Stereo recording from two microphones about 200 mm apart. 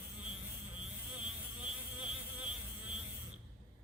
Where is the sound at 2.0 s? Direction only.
5° right (ahead or behind).